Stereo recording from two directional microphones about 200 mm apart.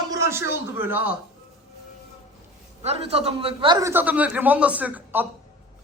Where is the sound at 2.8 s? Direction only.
30° right (ahead or behind).